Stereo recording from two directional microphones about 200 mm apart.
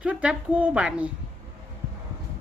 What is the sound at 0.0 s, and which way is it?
A woman's voice, 5° right (ahead or behind).